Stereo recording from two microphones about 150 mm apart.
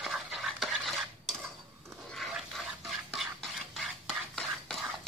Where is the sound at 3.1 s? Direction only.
5° left (ahead or behind).